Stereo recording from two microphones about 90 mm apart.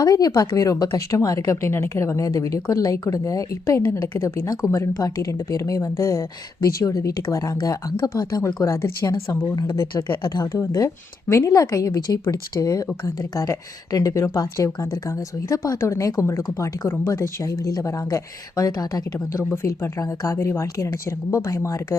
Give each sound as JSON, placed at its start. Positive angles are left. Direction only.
{"t": 0.0, "sound": "speech", "side_deg": 40}
{"t": 10.4, "sound": "speech", "side_deg": 30}